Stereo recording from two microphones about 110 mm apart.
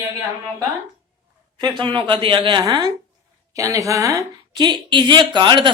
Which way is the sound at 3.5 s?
30° right (ahead or behind).